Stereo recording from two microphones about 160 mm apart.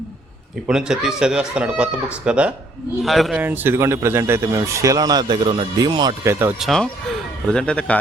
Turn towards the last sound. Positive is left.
turn(degrees=5)  # may be behind; listen again after turning